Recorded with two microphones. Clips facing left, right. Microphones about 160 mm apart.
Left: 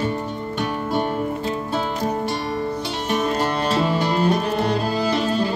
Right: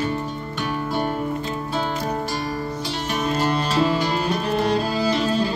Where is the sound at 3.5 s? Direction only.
60° left (ahead or behind).